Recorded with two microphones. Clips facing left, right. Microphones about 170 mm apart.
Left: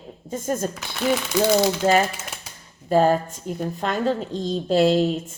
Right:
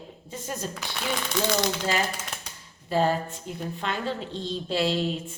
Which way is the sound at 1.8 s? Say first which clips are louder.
Left 8 dB; 50° left (ahead or behind).